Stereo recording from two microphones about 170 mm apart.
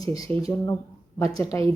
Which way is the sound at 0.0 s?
20° left (ahead or behind).